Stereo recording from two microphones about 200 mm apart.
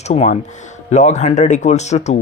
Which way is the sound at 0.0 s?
35° left (ahead or behind).